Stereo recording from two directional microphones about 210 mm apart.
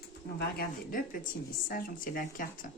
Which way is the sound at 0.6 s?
40° left (ahead or behind).